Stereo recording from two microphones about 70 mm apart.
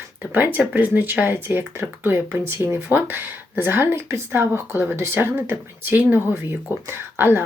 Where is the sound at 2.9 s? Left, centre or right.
Right.